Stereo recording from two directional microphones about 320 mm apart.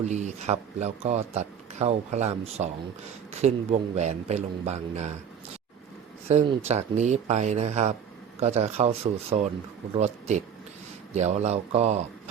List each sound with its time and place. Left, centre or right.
0.0 s speech: right
6.2 s speech: centre